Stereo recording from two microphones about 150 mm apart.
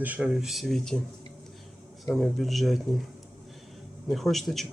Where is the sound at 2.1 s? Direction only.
Centre (ahead or behind).